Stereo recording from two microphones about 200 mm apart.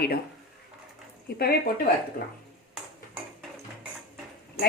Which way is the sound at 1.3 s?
50° left (ahead or behind).